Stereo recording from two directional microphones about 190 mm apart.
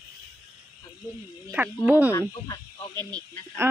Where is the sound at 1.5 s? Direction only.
10° right (ahead or behind).